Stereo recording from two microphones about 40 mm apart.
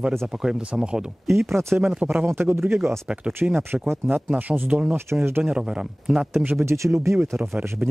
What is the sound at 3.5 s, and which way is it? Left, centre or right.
Speech, right.